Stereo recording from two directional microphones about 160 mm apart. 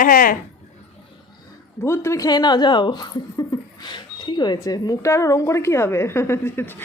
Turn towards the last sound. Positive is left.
turn(degrees=15)  # may be behind; listen again after turning